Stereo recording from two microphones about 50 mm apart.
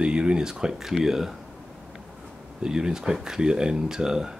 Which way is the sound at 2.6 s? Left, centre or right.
Centre.